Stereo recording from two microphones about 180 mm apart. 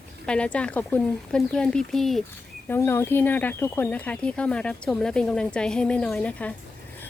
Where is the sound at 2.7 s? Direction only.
10° left (ahead or behind).